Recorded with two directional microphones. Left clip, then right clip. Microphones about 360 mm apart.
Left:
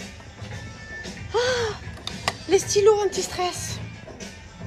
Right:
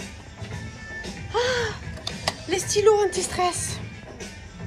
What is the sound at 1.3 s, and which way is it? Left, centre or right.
Gasp, centre.